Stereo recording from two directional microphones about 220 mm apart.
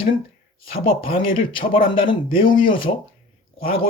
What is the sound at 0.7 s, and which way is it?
Speech, 25° left (ahead or behind).